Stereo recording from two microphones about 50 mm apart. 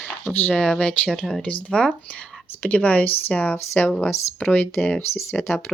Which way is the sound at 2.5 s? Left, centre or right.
Left.